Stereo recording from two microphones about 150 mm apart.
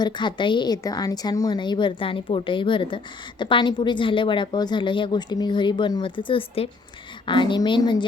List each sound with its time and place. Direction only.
0.0 s a woman's voice: 30° left (ahead or behind)